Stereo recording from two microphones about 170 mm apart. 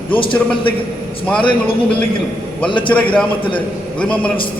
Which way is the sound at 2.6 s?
30° left (ahead or behind).